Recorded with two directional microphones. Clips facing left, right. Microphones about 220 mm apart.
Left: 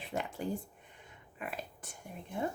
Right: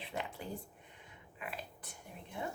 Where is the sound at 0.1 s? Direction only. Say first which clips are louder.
Left 6 dB; 45° left (ahead or behind).